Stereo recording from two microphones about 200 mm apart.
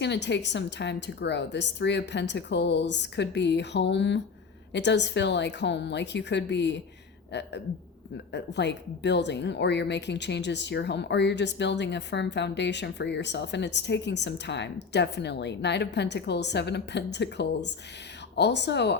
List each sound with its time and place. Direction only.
0.0 s a woman's voice: 60° left (ahead or behind)